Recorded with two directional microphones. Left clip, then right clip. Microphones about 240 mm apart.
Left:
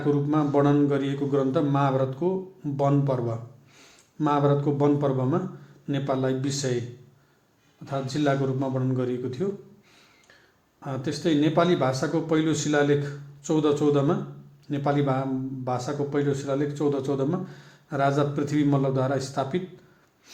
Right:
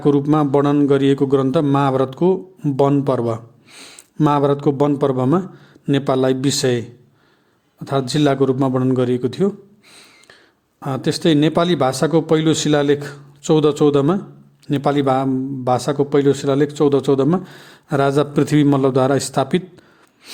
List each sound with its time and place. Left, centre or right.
0.0 s a man's voice: right
7.9 s a man's voice: right
10.8 s a man's voice: right